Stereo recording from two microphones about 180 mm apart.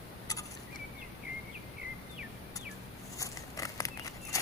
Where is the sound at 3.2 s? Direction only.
20° left (ahead or behind).